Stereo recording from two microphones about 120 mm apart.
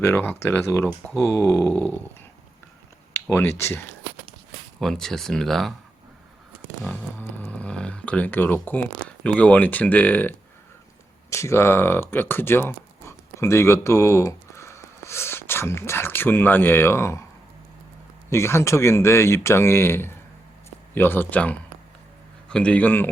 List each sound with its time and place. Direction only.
0.0 s speech: 15° left (ahead or behind)
3.2 s speech: 20° left (ahead or behind)
4.8 s speech: 5° left (ahead or behind)
6.8 s speech: 15° left (ahead or behind)
11.3 s speech: 25° left (ahead or behind)
18.3 s speech: 20° left (ahead or behind)